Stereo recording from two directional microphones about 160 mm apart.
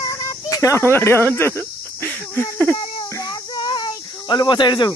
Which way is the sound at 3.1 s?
25° left (ahead or behind).